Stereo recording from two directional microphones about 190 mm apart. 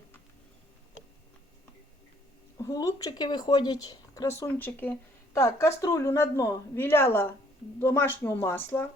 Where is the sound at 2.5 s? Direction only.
20° left (ahead or behind).